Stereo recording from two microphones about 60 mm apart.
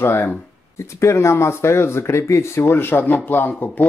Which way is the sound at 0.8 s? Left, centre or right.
Left.